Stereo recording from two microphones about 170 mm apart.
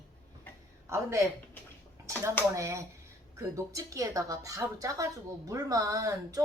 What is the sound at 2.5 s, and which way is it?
A woman's voice, 15° right (ahead or behind).